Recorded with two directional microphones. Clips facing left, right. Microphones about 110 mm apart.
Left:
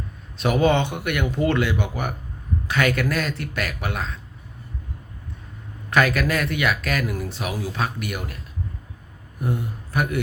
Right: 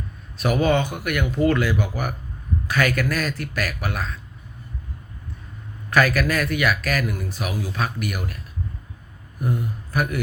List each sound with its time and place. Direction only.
0.3 s speech: 25° left (ahead or behind)
5.9 s speech: 25° left (ahead or behind)
9.9 s a man's voice: 25° left (ahead or behind)